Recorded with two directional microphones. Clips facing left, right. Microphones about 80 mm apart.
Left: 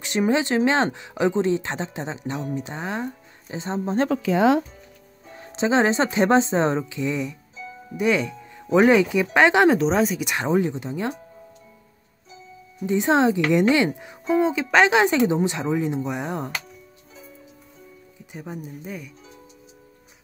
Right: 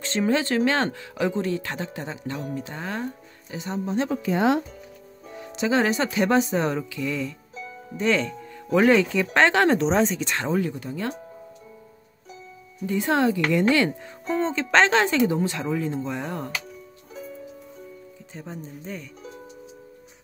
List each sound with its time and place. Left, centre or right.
0.0 s speech: centre
4.1 s speech: left
5.4 s speech: left
9.8 s speech: centre; by 11.1 s left
12.8 s speech: left
18.3 s speech: centre